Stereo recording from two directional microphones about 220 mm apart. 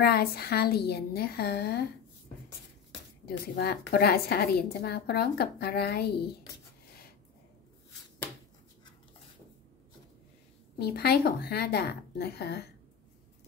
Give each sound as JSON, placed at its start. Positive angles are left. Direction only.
{"t": 0.0, "sound": "a woman's voice", "side_deg": 45}
{"t": 3.3, "sound": "a woman's voice", "side_deg": 45}
{"t": 10.8, "sound": "a woman's voice", "side_deg": 45}